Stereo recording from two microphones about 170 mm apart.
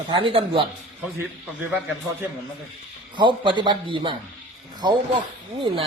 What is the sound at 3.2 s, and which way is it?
Speech, 25° right (ahead or behind).